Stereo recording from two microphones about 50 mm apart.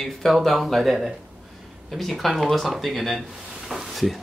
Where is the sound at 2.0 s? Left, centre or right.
Centre.